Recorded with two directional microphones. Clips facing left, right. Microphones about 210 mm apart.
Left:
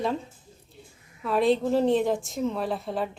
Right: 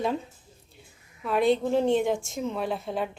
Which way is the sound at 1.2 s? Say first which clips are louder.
Left 1 dB; centre (ahead or behind).